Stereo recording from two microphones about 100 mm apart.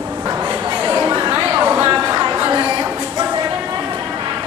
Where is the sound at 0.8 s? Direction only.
30° right (ahead or behind).